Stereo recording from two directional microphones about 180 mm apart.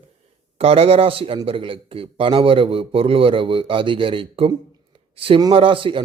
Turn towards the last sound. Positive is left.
turn(degrees=-30)  # may be behind; listen again after turning